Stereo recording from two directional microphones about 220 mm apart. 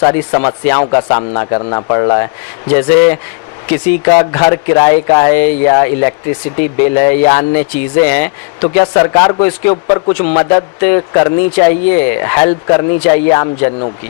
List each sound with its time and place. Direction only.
0.0 s a man's voice: 20° left (ahead or behind)